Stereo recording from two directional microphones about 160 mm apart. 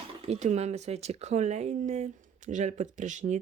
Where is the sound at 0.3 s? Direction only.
45° right (ahead or behind).